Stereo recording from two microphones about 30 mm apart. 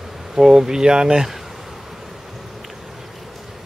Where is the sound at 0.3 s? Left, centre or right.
Centre.